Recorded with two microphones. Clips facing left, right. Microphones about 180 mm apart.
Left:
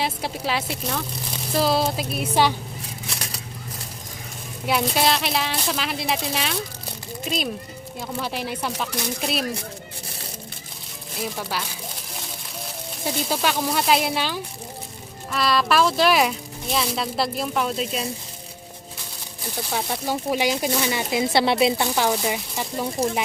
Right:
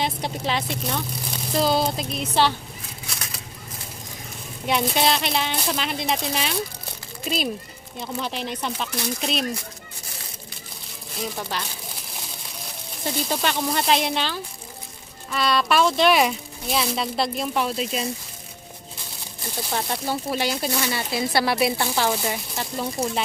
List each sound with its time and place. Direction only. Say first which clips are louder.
0.0 s speech: even; 5° left (ahead or behind)
4.6 s speech: even; 5° left (ahead or behind)
7.9 s speech: even; 10° left (ahead or behind)
11.2 s speech: left 1 dB; 5° left (ahead or behind)
13.1 s speech: left 1 dB; 5° left (ahead or behind)
19.7 s a woman's voice: even; 10° left (ahead or behind)
22.1 s speech: left 2 dB; 10° left (ahead or behind)